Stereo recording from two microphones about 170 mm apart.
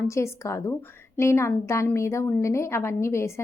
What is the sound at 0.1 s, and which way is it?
A woman's voice, 15° left (ahead or behind).